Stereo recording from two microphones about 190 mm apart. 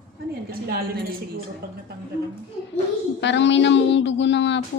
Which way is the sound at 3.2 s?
70° left (ahead or behind).